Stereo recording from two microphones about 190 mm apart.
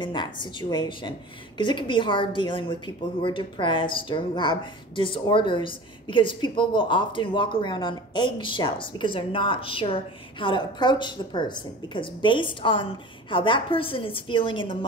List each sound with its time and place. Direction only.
0.0 s a woman's voice: 25° left (ahead or behind)